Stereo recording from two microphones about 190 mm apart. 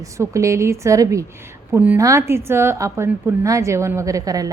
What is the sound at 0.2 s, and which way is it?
A woman's voice, 15° right (ahead or behind).